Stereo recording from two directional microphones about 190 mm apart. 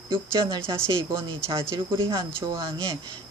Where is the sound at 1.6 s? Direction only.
15° right (ahead or behind).